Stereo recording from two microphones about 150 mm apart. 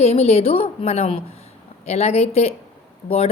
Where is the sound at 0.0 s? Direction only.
45° left (ahead or behind).